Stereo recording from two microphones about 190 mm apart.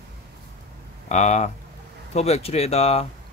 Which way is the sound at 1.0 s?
35° left (ahead or behind).